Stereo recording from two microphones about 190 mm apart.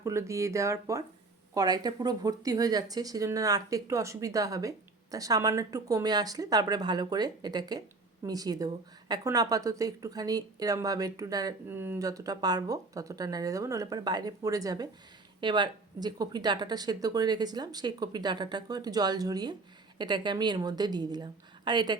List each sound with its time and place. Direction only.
0.0 s a woman's voice: 15° right (ahead or behind)